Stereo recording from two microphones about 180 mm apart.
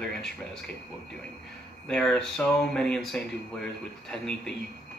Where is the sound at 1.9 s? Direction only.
5° left (ahead or behind).